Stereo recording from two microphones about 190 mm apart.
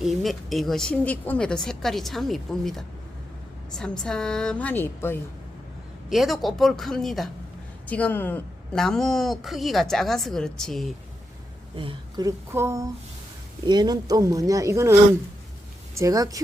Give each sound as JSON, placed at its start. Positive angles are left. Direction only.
{"t": 0.0, "sound": "speech", "side_deg": 0}
{"t": 6.1, "sound": "speech", "side_deg": 0}
{"t": 11.8, "sound": "speech", "side_deg": -25}
{"t": 16.0, "sound": "speech", "side_deg": -15}